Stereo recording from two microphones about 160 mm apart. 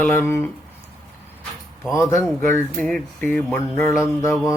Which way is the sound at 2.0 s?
20° left (ahead or behind).